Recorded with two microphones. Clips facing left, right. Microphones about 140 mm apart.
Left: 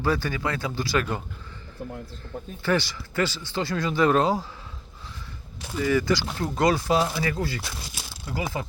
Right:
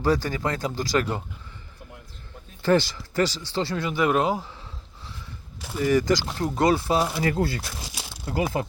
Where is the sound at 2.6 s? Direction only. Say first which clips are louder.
Right 4 dB; 40° right (ahead or behind).